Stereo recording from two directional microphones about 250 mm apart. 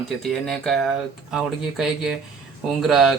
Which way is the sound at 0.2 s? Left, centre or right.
Centre.